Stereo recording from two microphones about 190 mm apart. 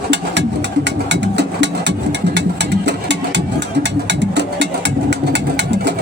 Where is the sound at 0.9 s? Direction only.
65° right (ahead or behind).